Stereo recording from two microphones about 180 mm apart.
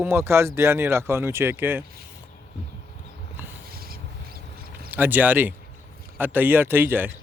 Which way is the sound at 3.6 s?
55° right (ahead or behind).